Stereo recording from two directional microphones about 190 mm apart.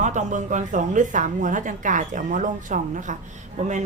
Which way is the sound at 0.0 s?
40° right (ahead or behind).